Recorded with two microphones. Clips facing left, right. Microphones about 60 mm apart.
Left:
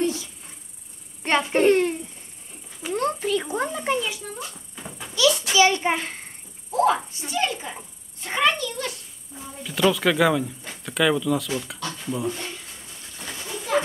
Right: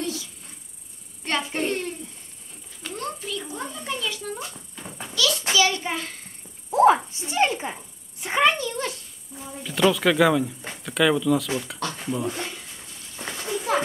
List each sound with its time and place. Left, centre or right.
0.0 s a sound: left
1.2 s a child's voice: left
2.9 s a sound: left
3.2 s a sound: left
3.5 s a child's voice: left
4.2 s speech: centre
5.1 s a child's voice: left
6.7 s a sound: right
7.2 s speech: right
8.2 s speech: centre
9.3 s speech: centre
11.8 s speech: right
12.1 s speech: centre